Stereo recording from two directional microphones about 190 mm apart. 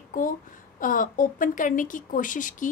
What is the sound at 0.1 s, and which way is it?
Speech, 45° left (ahead or behind).